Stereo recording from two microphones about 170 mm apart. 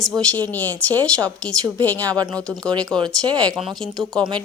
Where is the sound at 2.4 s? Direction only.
5° left (ahead or behind).